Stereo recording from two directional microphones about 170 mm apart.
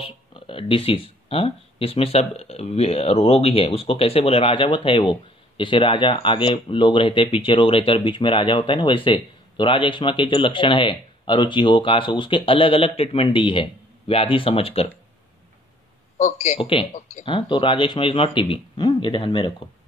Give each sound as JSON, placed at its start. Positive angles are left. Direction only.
{"t": 0.0, "sound": "speech", "side_deg": 30}
{"t": 16.2, "sound": "speech", "side_deg": 45}
{"t": 16.5, "sound": "speech", "side_deg": 30}